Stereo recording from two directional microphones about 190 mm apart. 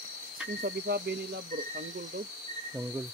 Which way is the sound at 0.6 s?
60° right (ahead or behind).